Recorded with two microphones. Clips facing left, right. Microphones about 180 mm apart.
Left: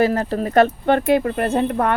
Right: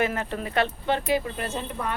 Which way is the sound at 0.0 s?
35° left (ahead or behind).